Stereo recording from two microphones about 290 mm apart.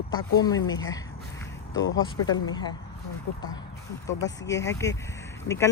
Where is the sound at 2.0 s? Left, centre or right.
Centre.